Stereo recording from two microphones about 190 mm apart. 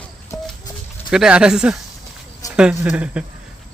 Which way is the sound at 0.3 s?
15° left (ahead or behind).